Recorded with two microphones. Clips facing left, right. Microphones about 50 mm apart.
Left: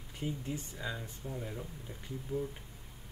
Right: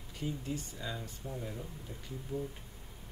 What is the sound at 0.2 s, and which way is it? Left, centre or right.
Speech, left.